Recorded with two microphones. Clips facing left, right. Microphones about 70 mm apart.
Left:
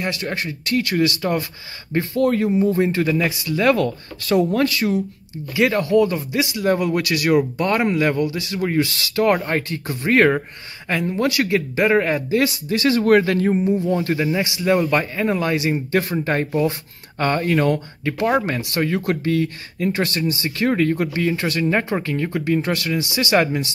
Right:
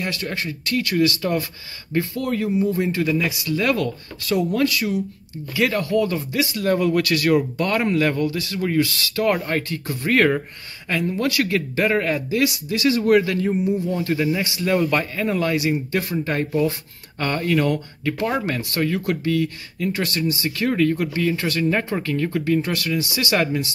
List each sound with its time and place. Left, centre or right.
0.0 s speech: left
12.4 s speech: left
14.2 s speech: left
15.9 s speech: left